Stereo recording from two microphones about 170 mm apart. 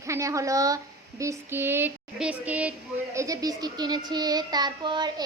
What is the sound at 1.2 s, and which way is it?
Child singing, 15° right (ahead or behind).